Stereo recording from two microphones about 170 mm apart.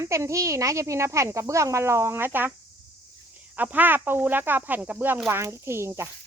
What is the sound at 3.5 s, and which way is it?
Speech, 10° right (ahead or behind).